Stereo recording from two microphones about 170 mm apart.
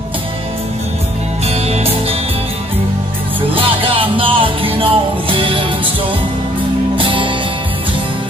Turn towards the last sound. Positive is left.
turn(degrees=-30)  # may be behind; listen again after turning